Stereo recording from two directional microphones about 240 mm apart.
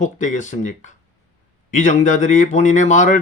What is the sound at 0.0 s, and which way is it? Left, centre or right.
Speech, left.